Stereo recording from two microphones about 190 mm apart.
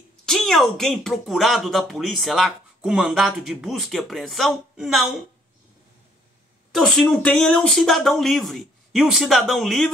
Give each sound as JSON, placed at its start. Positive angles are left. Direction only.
{"t": 0.2, "sound": "speech", "side_deg": 0}
{"t": 6.7, "sound": "speech", "side_deg": 0}